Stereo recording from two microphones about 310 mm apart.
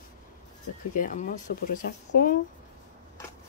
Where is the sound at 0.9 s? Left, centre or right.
Left.